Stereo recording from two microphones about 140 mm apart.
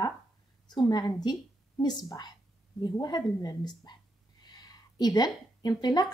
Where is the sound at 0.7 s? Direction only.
30° left (ahead or behind).